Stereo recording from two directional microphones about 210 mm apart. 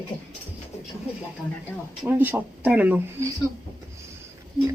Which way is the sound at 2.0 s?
10° right (ahead or behind).